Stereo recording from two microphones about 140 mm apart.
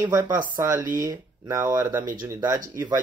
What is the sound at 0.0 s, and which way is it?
Speech, 20° right (ahead or behind).